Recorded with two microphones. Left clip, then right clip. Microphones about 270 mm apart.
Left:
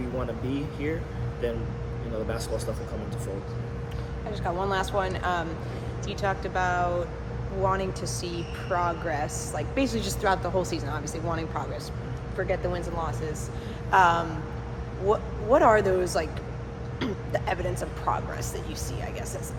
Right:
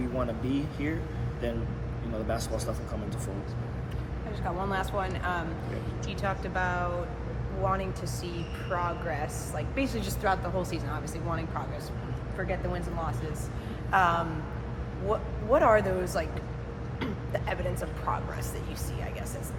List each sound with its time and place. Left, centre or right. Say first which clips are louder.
0.2 s speech: right 1 dB; centre
4.4 s a woman's voice: left 4 dB; left